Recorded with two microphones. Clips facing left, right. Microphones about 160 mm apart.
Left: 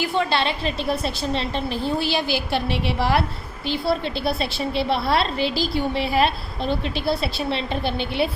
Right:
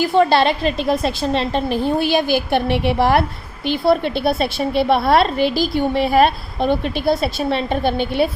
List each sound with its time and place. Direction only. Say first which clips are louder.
0.0 s a woman's voice: right 8 dB; 40° right (ahead or behind)
0.6 s a woman's voice: right 6 dB; 75° right (ahead or behind)
1.4 s a woman's voice: right 6 dB; 55° right (ahead or behind)